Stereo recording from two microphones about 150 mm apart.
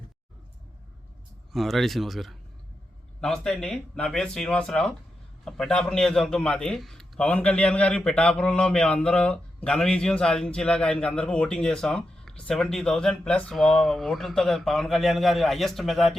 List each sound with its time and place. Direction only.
1.5 s a man's voice: centre (ahead or behind)